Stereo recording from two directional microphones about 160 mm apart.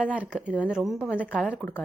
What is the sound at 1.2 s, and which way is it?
Speech, 5° left (ahead or behind).